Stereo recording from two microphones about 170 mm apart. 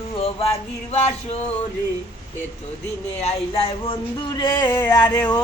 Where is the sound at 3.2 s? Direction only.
35° left (ahead or behind).